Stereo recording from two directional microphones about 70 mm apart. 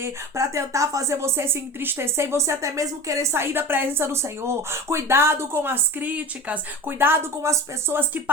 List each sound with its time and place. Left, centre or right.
0.0 s speech: right
7.4 s speech: right